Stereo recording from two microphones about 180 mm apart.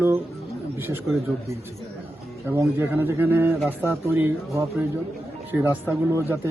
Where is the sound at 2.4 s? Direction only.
15° right (ahead or behind).